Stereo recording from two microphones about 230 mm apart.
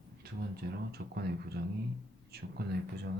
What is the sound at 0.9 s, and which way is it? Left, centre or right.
Speech, right.